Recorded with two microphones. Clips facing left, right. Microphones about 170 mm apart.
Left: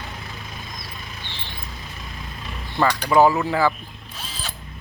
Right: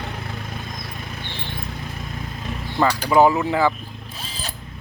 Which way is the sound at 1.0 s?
55° right (ahead or behind).